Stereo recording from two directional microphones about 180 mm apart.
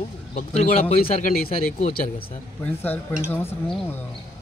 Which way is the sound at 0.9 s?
55° left (ahead or behind).